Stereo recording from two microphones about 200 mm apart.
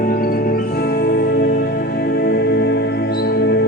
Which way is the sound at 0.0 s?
45° left (ahead or behind).